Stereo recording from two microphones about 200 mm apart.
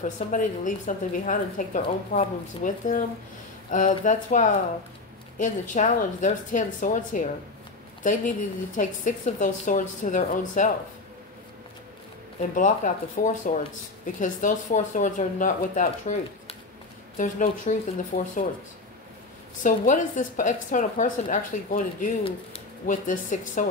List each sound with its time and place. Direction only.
0.0 s a woman's voice: 40° left (ahead or behind)
8.7 s a woman's voice: 40° left (ahead or behind)
12.5 s a woman's voice: 40° left (ahead or behind)
19.6 s a woman's voice: 40° left (ahead or behind)